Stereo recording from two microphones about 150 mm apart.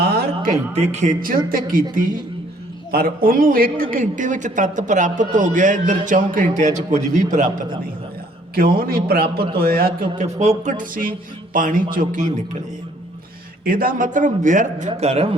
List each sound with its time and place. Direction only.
0.0 s a sound: 90° right
0.9 s a man's voice: 50° right (ahead or behind); by 2.2 s 65° right (ahead or behind)
2.9 s a man's voice: 85° right
3.9 s a man's voice: 60° right (ahead or behind)
8.5 s a man's voice: 80° right
10.2 s music: 45° right (ahead or behind)
10.6 s a man's voice: 55° right (ahead or behind)
13.7 s a man's voice: 70° right (ahead or behind); by 15.4 s 45° right (ahead or behind)